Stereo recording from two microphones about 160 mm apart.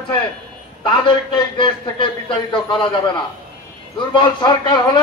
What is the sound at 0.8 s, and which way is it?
A man's voice, 30° left (ahead or behind).